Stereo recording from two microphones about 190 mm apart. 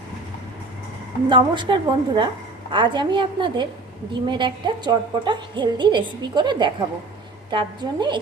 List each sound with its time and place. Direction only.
1.3 s a woman's voice: 25° right (ahead or behind)